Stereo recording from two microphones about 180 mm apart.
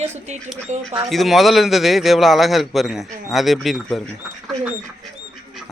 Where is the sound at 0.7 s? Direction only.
40° right (ahead or behind).